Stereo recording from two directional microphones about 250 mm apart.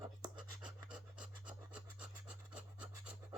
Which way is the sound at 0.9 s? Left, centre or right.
Centre.